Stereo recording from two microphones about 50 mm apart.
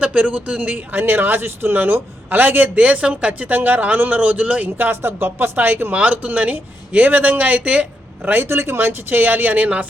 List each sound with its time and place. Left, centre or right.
0.0 s speech: right
1.0 s a man's voice: right
4.9 s speech: right
5.9 s a man's voice: right
8.4 s a man's voice: right